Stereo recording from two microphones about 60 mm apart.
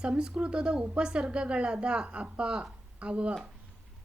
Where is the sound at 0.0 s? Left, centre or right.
Centre.